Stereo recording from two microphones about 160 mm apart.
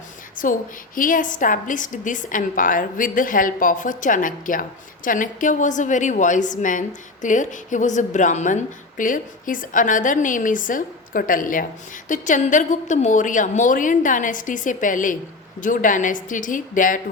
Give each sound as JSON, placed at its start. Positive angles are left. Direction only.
{"t": 0.4, "sound": "a woman's voice", "side_deg": 55}